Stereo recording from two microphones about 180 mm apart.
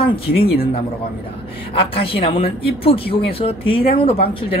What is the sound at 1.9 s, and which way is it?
Speech, 30° left (ahead or behind).